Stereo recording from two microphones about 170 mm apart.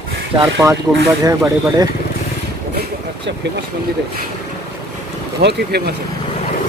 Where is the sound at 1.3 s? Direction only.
20° right (ahead or behind).